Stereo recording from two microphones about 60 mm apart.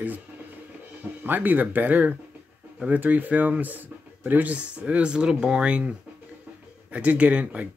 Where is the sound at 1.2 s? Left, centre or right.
Right.